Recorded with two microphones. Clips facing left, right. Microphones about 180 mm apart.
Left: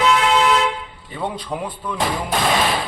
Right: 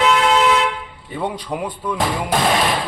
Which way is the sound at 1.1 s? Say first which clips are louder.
Right 2 dB; 10° right (ahead or behind).